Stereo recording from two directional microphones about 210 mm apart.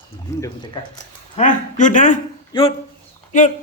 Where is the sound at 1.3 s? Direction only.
35° left (ahead or behind).